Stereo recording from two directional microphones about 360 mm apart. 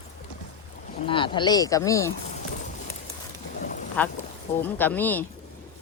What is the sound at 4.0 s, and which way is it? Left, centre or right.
Speech, centre.